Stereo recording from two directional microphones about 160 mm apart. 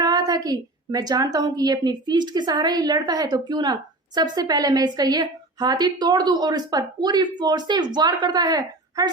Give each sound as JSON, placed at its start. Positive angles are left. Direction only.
{"t": 0.0, "sound": "a woman's voice", "side_deg": -25}